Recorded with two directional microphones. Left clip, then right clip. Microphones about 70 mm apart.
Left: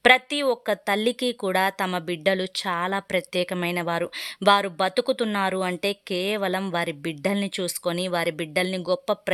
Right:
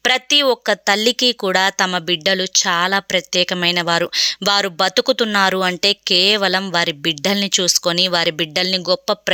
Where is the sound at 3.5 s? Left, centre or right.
Centre.